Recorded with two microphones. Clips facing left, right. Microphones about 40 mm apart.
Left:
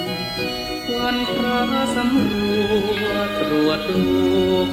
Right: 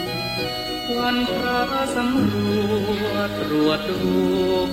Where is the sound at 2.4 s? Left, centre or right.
Left.